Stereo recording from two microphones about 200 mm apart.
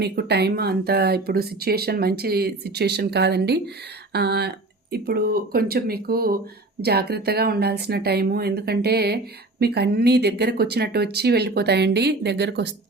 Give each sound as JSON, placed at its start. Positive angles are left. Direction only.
{"t": 0.0, "sound": "speech", "side_deg": -55}